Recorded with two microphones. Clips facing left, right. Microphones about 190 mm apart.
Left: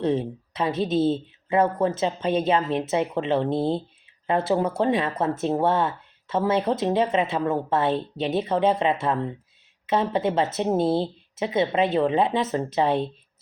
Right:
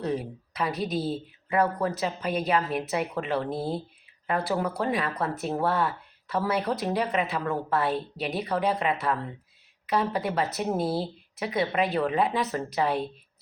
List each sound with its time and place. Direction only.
0.0 s speech: 25° left (ahead or behind)